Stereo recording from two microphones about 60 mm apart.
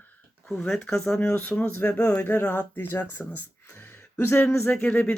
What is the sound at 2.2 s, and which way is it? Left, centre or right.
Speech, left.